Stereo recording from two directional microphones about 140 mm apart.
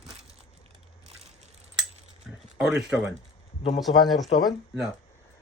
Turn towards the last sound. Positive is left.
turn(degrees=0)  # may be behind; listen again after turning